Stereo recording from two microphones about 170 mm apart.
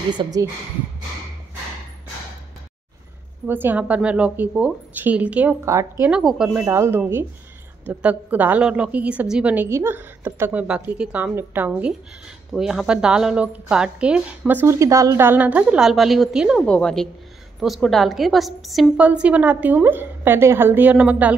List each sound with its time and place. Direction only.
0.1 s speech: 25° right (ahead or behind)
3.4 s a woman's voice: 10° right (ahead or behind)